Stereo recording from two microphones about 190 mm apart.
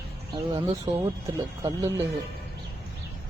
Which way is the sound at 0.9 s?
35° right (ahead or behind).